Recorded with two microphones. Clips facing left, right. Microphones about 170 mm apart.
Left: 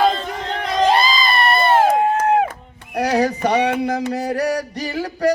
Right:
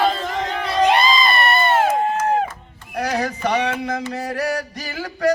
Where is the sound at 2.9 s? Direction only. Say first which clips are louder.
Left 5 dB; 35° left (ahead or behind).